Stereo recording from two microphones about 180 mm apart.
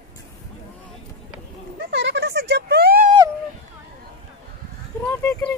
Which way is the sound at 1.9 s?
75° right (ahead or behind).